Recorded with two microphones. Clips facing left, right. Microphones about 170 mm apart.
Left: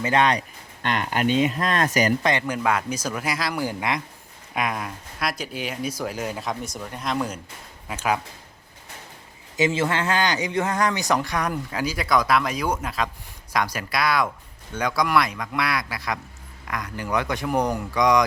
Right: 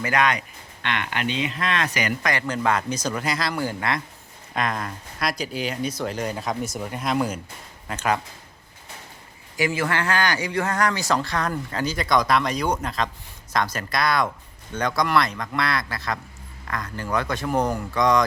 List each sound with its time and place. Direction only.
0.0 s speech: 30° left (ahead or behind)
2.5 s speech: 5° left (ahead or behind)
7.9 s speech: 5° left (ahead or behind)
9.6 s speech: 20° left (ahead or behind)